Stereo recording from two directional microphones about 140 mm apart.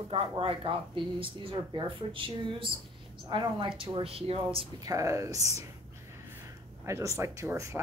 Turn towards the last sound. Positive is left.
turn(degrees=-20)  # may be behind; listen again after turning